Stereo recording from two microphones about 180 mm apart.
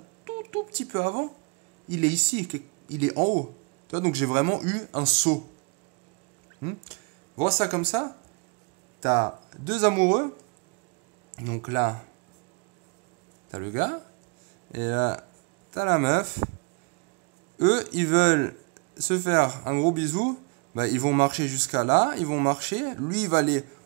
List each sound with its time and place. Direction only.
0.2 s a sound: 40° right (ahead or behind)
1.9 s speech: 40° right (ahead or behind)
7.3 s speech: 30° right (ahead or behind)
9.7 s speech: 50° right (ahead or behind)
11.4 s speech: 55° right (ahead or behind)
13.5 s speech: 50° right (ahead or behind)
17.6 s speech: 50° right (ahead or behind)